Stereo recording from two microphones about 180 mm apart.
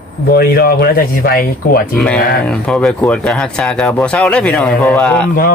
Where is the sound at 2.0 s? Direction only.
5° left (ahead or behind).